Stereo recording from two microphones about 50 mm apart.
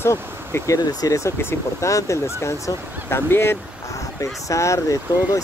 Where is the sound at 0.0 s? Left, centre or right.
Left.